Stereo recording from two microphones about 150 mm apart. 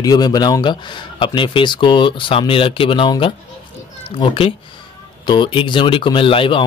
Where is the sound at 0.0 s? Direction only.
25° left (ahead or behind).